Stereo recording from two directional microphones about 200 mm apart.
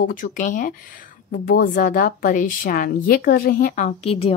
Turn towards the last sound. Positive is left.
turn(degrees=30)  # may be behind; listen again after turning